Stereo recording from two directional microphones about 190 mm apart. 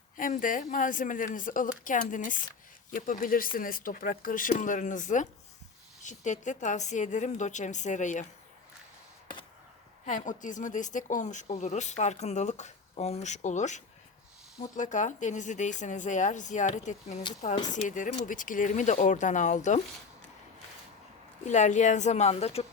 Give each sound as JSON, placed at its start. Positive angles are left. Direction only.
{"t": 0.2, "sound": "speech", "side_deg": 45}
{"t": 10.1, "sound": "speech", "side_deg": 40}
{"t": 21.4, "sound": "speech", "side_deg": 40}